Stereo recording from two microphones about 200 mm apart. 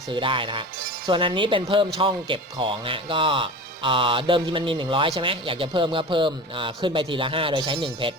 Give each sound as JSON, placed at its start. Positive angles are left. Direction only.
{"t": 0.1, "sound": "speech", "side_deg": -25}